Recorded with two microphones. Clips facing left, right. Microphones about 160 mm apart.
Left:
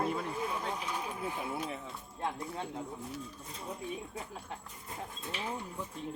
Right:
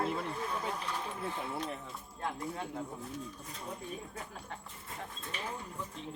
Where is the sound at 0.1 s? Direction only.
5° left (ahead or behind).